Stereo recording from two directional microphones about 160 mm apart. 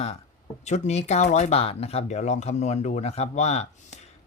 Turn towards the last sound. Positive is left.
turn(degrees=45)  # may be behind; listen again after turning